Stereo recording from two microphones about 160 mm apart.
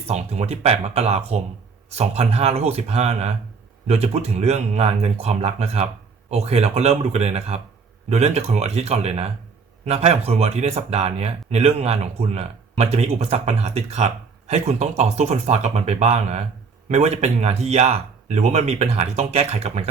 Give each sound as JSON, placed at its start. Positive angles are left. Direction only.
{"t": 0.1, "sound": "speech", "side_deg": -45}